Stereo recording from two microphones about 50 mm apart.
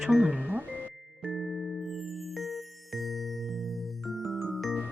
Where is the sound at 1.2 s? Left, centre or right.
Centre.